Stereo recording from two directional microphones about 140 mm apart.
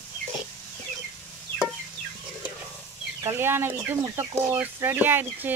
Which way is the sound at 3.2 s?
15° right (ahead or behind).